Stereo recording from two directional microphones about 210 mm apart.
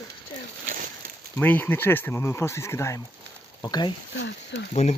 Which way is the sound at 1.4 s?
10° left (ahead or behind).